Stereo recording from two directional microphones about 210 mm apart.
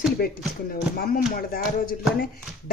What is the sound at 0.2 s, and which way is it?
Speech, 45° left (ahead or behind).